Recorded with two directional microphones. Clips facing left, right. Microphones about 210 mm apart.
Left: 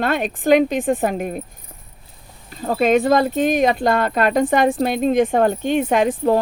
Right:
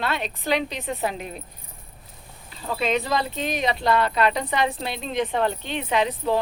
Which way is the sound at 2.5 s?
45° left (ahead or behind).